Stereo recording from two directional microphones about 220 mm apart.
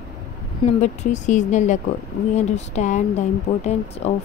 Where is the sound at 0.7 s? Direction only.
35° left (ahead or behind).